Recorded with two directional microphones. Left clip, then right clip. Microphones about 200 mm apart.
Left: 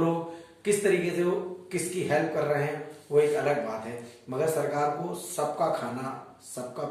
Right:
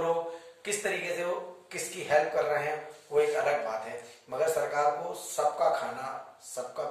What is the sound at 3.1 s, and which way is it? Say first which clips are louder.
A man's voice: left 2 dB; 5° right (ahead or behind).